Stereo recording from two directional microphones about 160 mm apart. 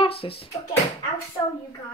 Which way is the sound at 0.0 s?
35° left (ahead or behind).